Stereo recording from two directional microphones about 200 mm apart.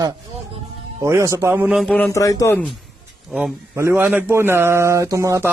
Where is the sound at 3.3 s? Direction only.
5° right (ahead or behind).